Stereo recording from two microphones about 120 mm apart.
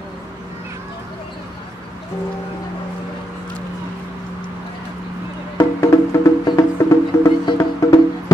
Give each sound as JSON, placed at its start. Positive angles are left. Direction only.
{"t": 5.6, "sound": "music", "side_deg": 25}